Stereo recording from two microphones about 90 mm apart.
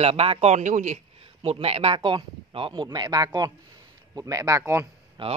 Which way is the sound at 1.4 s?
80° right.